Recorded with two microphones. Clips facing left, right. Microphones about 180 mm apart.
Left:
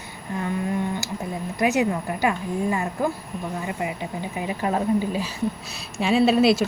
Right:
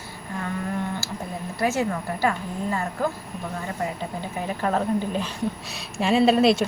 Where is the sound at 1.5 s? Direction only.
15° left (ahead or behind).